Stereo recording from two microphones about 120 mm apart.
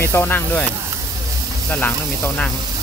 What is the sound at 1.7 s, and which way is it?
Speech, 15° left (ahead or behind).